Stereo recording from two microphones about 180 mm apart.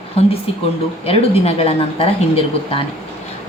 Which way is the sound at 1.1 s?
35° left (ahead or behind).